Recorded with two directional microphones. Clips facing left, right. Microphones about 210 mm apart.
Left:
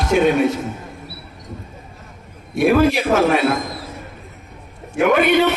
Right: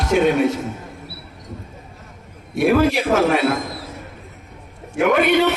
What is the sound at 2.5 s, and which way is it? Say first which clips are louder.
Speech: left 1 dB; 55° left (ahead or behind).